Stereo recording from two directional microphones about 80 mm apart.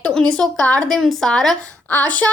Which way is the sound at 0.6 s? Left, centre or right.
Centre.